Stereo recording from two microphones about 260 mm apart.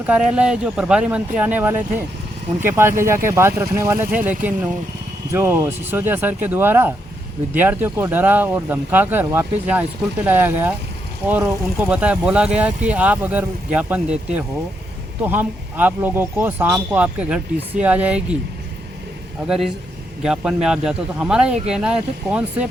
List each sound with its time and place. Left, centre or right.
0.0 s speech: centre
19.5 s speech: centre